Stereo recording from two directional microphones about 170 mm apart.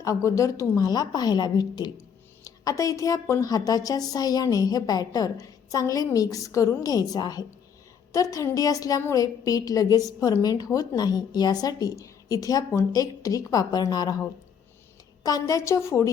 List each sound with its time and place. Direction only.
0.0 s a woman's voice: 20° left (ahead or behind)
15.2 s a woman's voice: 20° left (ahead or behind)